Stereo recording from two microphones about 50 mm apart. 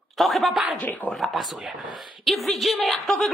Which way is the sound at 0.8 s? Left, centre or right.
Left.